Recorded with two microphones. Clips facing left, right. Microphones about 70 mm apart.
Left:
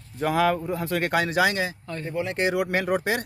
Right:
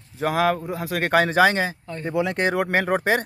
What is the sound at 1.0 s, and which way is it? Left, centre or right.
Speech, right.